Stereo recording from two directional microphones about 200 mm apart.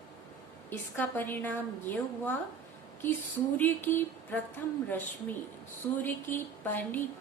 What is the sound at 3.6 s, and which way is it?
A woman's voice, 10° left (ahead or behind).